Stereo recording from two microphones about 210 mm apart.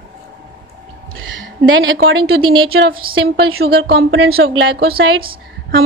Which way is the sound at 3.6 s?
45° right (ahead or behind).